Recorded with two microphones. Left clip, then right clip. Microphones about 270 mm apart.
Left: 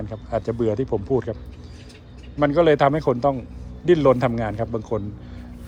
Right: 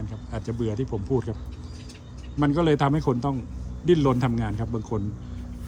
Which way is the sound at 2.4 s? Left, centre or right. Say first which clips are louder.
Left 6 dB; centre.